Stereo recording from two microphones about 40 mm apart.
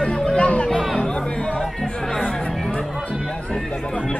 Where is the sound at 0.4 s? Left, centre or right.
Left.